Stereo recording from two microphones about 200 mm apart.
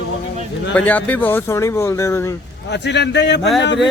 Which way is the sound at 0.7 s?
10° left (ahead or behind).